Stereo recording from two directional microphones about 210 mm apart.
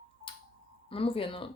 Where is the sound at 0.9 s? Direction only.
25° left (ahead or behind).